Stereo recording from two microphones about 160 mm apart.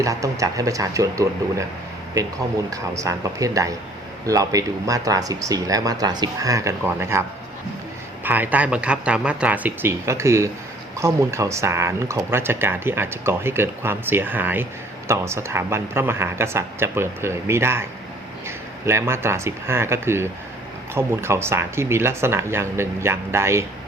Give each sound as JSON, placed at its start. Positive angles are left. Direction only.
{"t": 0.0, "sound": "speech", "side_deg": -20}
{"t": 2.6, "sound": "speech", "side_deg": -20}